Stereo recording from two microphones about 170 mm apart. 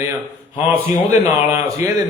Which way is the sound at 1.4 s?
15° right (ahead or behind).